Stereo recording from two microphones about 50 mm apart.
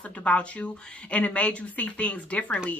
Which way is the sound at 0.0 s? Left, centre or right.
Left.